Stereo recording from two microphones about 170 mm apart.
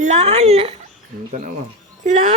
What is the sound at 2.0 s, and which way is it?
Speech, 45° right (ahead or behind).